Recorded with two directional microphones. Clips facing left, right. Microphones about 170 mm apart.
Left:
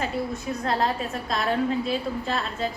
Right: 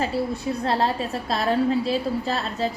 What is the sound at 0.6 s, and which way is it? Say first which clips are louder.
A woman's voice: right 1 dB; 30° right (ahead or behind).